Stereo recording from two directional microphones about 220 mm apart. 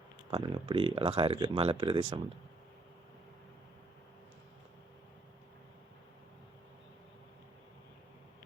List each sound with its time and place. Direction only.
0.3 s speech: 20° right (ahead or behind)